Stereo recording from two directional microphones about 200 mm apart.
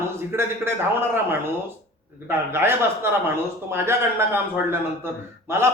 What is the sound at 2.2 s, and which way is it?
Speech, 10° right (ahead or behind).